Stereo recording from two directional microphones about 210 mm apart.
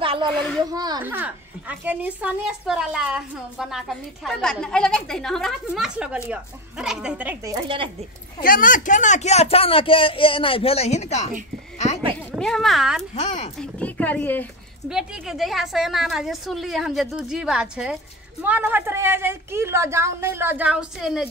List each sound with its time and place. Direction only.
0.0 s a sound: 25° right (ahead or behind)
0.3 s a child's voice: 5° left (ahead or behind)
0.7 s a child's voice: 20° right (ahead or behind)
7.5 s speech: 25° right (ahead or behind)
8.4 s speech: 40° left (ahead or behind)
12.3 s speech: centre (ahead or behind)
13.1 s speech: 30° left (ahead or behind)
13.6 s speech: 5° left (ahead or behind)
14.9 s a child's voice: centre (ahead or behind)